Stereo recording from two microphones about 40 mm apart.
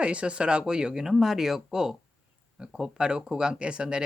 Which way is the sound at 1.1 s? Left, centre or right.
Centre.